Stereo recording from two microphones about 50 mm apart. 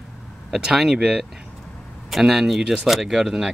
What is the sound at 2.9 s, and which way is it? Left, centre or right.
Speech, centre.